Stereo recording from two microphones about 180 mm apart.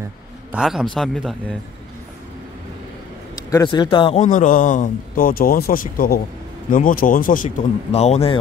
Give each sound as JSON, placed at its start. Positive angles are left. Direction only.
{"t": 0.5, "sound": "speech", "side_deg": -5}
{"t": 3.4, "sound": "a man's voice", "side_deg": 20}